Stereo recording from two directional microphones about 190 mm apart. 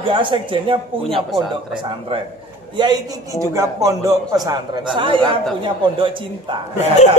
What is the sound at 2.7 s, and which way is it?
A man's voice, 20° right (ahead or behind).